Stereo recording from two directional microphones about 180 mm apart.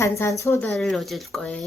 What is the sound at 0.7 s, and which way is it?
Speech, centre (ahead or behind).